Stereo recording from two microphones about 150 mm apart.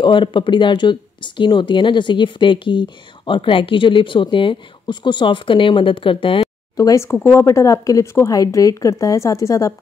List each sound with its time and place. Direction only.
0.0 s speech: 35° left (ahead or behind)
6.4 s a sound: 20° left (ahead or behind)
7.2 s a woman's voice: 20° left (ahead or behind)